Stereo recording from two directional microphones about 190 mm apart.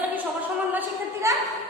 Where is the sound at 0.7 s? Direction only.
15° right (ahead or behind).